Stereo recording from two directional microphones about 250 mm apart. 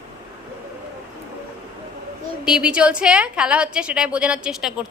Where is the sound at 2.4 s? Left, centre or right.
Centre.